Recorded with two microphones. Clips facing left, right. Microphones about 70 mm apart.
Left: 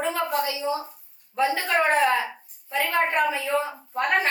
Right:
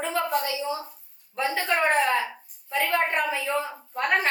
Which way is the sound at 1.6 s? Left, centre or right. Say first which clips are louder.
Even; centre.